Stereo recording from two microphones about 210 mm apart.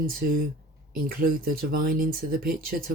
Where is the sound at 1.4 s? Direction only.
45° right (ahead or behind).